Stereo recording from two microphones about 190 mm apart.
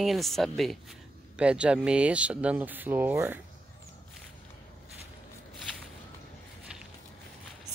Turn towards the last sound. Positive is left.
turn(degrees=-5)  # may be behind; listen again after turning